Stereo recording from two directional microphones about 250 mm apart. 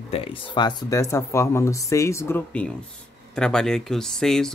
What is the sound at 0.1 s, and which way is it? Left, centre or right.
Speech, left.